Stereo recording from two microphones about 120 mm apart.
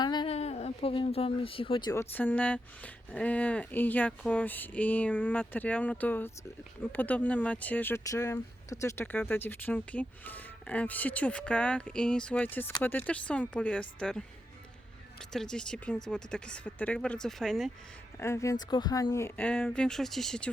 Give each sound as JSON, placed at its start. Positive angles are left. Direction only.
{"t": 0.0, "sound": "a sound", "side_deg": 35}
{"t": 0.3, "sound": "speech", "side_deg": 60}
{"t": 1.9, "sound": "speech", "side_deg": 20}
{"t": 8.1, "sound": "speech", "side_deg": 25}
{"t": 15.3, "sound": "speech", "side_deg": 5}
{"t": 18.2, "sound": "speech", "side_deg": 25}
{"t": 18.7, "sound": "speech", "side_deg": 35}
{"t": 19.4, "sound": "speech", "side_deg": 15}